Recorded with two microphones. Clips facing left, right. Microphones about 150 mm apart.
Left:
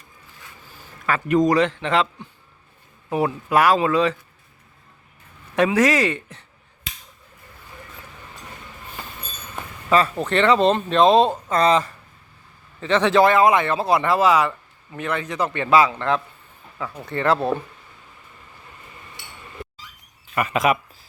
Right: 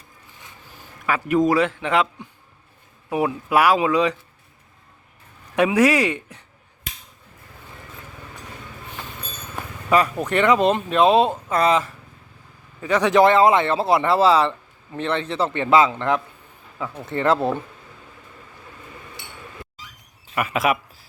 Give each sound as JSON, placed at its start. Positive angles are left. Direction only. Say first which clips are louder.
{"t": 1.0, "sound": "speech", "louder": "left 1 dB", "side_deg": -10}
{"t": 3.1, "sound": "speech", "louder": "even", "side_deg": -10}
{"t": 5.5, "sound": "speech", "louder": "right 1 dB", "side_deg": -10}
{"t": 9.9, "sound": "speech", "louder": "even", "side_deg": -15}
{"t": 20.3, "sound": "speech", "louder": "left 1 dB", "side_deg": -5}